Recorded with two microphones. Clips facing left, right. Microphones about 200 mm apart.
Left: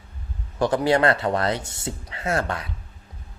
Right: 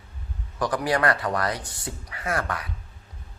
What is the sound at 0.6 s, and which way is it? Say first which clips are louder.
Speech: left 4 dB; 25° left (ahead or behind).